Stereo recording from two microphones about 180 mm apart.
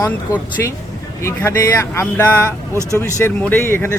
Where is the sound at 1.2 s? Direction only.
15° left (ahead or behind).